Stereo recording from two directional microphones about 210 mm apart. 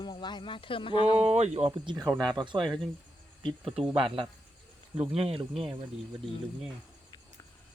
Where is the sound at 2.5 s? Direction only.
Centre (ahead or behind).